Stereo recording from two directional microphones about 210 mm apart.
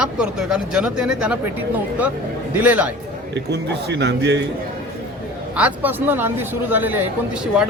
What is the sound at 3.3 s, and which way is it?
A man's voice, 55° right (ahead or behind).